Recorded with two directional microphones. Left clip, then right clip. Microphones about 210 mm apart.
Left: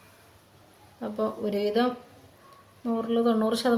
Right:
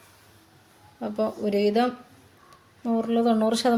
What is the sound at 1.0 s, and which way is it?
Speech, 35° right (ahead or behind).